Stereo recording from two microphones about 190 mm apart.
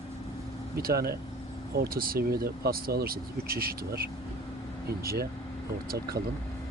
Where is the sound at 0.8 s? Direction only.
50° right (ahead or behind).